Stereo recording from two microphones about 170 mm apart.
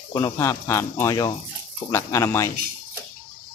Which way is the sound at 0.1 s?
20° left (ahead or behind).